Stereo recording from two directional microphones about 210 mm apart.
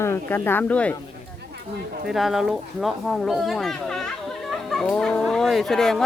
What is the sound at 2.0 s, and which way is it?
Speech, centre (ahead or behind).